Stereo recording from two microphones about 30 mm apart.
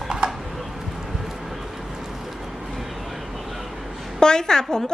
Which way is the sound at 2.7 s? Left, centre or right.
Centre.